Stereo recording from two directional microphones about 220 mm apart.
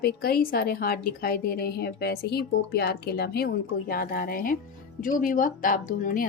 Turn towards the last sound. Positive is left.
turn(degrees=35)  # may be behind; listen again after turning